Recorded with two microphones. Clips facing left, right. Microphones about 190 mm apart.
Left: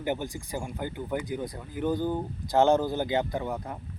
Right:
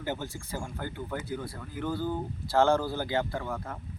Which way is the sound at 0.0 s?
15° left (ahead or behind).